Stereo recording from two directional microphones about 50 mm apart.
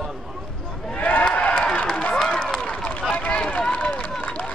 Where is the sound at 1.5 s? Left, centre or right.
Left.